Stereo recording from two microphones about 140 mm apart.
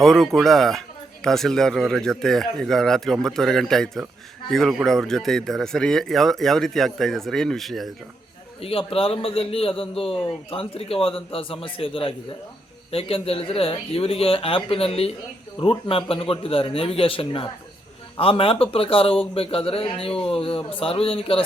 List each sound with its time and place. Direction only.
0.0 s speech: centre (ahead or behind)
8.6 s speech: 40° left (ahead or behind)